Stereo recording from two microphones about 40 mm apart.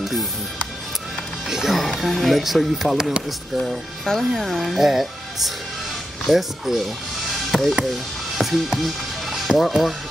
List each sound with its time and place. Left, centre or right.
1.5 s music: centre
1.8 s speech: centre
3.0 s speech: centre
4.1 s speech: centre
4.4 s speech: centre
4.7 s speech: centre
7.2 s chop: centre
8.4 s music: centre
9.6 s speech: centre